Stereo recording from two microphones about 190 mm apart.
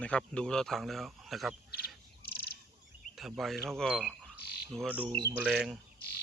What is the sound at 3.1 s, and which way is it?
Speech, centre (ahead or behind).